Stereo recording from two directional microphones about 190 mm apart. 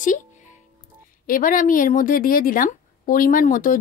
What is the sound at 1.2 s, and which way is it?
A woman's voice, 45° left (ahead or behind).